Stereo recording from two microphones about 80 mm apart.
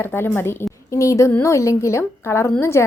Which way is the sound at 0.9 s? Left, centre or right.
Left.